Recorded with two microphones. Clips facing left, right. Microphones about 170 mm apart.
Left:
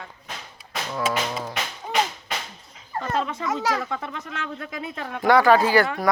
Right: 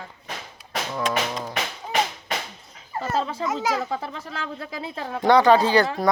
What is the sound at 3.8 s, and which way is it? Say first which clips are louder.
Speech: right 1 dB; 30° right (ahead or behind).